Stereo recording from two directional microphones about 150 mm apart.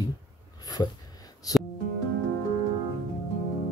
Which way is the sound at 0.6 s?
25° left (ahead or behind).